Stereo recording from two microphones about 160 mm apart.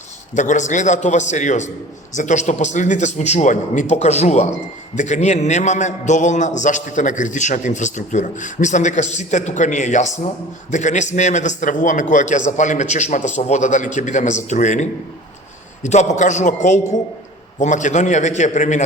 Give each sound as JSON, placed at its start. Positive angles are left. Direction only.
{"t": 0.3, "sound": "a man's voice", "side_deg": 50}